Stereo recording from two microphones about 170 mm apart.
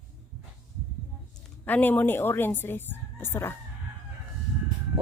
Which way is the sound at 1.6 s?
10° left (ahead or behind).